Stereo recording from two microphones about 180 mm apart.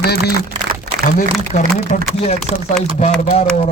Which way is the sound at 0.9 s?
70° right (ahead or behind).